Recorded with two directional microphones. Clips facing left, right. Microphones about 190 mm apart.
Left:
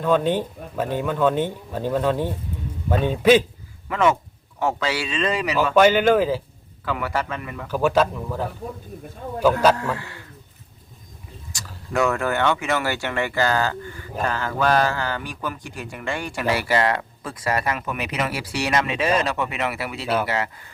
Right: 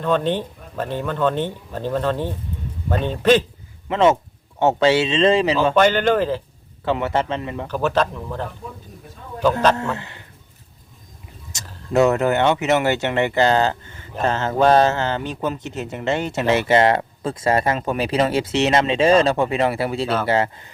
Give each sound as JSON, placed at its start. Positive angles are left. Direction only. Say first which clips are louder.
{"t": 0.0, "sound": "speech", "louder": "even", "side_deg": 10}
{"t": 3.8, "sound": "speech", "louder": "right 4 dB", "side_deg": -25}
{"t": 5.7, "sound": "speech", "louder": "left 4 dB", "side_deg": 10}
{"t": 6.8, "sound": "speech", "louder": "right 5 dB", "side_deg": -25}
{"t": 7.7, "sound": "speech", "louder": "left 2 dB", "side_deg": 10}
{"t": 9.7, "sound": "speech", "louder": "right 1 dB", "side_deg": -25}
{"t": 11.5, "sound": "speech", "louder": "right 6 dB", "side_deg": -20}